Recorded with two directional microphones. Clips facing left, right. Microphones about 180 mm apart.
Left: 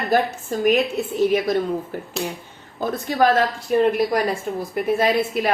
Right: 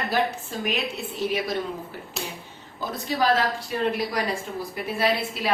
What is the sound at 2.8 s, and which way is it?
A woman's voice, 50° left (ahead or behind).